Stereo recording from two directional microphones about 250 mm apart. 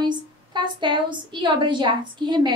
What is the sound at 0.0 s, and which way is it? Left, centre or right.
A woman's voice, centre.